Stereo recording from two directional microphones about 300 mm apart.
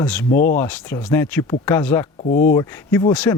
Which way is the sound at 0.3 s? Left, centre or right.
Left.